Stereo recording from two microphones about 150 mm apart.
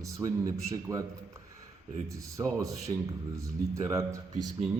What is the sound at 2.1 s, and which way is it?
Speech, 20° right (ahead or behind).